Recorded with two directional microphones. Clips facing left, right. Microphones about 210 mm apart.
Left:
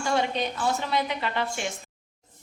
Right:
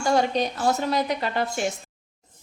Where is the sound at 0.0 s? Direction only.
40° right (ahead or behind).